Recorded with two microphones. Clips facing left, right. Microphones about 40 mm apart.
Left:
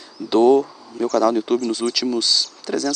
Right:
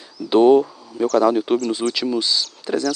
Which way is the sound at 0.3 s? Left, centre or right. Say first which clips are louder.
Right 1 dB; right.